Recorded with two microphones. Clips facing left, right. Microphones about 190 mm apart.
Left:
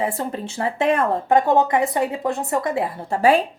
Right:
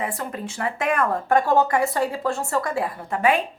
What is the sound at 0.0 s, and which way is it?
A woman's voice, 30° left (ahead or behind).